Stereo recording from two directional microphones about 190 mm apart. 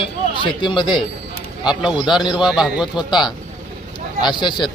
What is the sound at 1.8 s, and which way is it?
A man's voice, 5° right (ahead or behind).